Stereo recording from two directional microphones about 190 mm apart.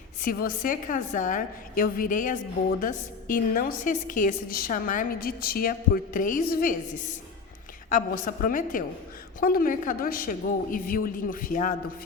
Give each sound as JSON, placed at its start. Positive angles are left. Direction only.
{"t": 0.2, "sound": "a woman's voice", "side_deg": 50}
{"t": 8.4, "sound": "a woman's voice", "side_deg": 45}